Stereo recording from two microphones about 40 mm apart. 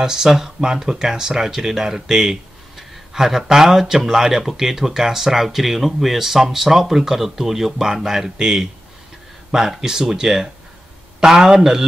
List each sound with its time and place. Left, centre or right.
0.0 s speech: centre